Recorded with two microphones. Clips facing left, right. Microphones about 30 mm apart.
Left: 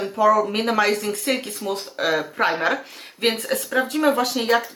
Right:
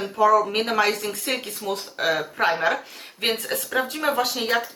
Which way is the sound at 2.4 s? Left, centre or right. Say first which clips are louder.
Even; centre.